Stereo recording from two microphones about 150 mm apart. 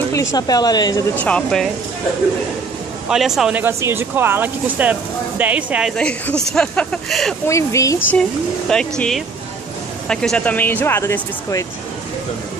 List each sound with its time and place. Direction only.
0.1 s a woman's voice: 20° left (ahead or behind)
1.1 s speech: 10° left (ahead or behind)
3.1 s speech: centre (ahead or behind)
5.9 s speech: 5° left (ahead or behind)
7.4 s a woman's voice: 20° left (ahead or behind)
8.1 s speech: 5° left (ahead or behind)